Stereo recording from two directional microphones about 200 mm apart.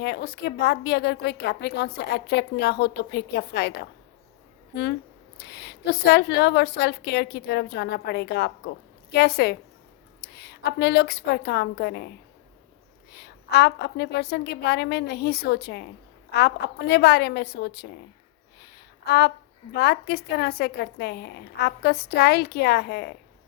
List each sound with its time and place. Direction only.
0.0 s a woman's voice: 55° left (ahead or behind)
13.1 s a woman's voice: 55° left (ahead or behind)
19.0 s a woman's voice: 55° left (ahead or behind)